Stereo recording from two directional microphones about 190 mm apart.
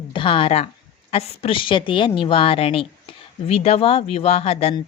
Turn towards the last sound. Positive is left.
turn(degrees=35)  # may be behind; listen again after turning